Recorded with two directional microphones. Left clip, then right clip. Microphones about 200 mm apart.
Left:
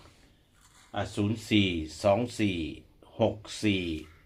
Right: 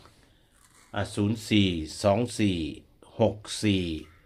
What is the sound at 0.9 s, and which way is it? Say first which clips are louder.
Speech: right 2 dB; 45° right (ahead or behind).